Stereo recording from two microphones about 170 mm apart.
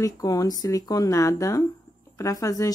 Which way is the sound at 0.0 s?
20° left (ahead or behind).